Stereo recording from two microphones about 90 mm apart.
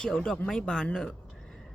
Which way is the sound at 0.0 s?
10° left (ahead or behind).